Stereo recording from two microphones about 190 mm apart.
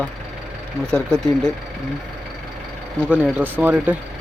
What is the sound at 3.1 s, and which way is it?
Speech, 5° right (ahead or behind).